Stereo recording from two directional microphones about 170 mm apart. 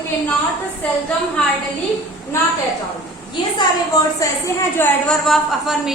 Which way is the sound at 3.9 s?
20° left (ahead or behind).